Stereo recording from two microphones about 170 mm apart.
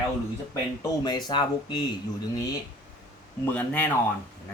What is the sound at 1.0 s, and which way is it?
Speech, 25° left (ahead or behind).